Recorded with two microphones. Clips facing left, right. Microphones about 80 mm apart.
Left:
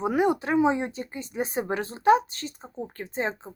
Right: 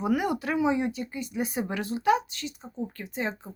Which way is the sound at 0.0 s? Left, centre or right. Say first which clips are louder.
Left 3 dB; left.